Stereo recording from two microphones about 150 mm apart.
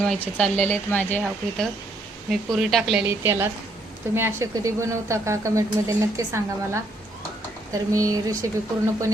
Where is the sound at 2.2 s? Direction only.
Centre (ahead or behind).